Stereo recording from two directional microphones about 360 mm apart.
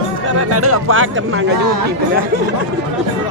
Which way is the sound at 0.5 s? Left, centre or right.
Right.